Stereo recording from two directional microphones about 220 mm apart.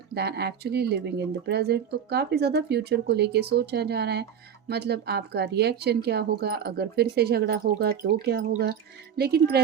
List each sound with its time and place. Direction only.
0.1 s speech: 45° right (ahead or behind)